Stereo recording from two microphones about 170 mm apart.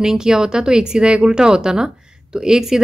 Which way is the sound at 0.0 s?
5° right (ahead or behind).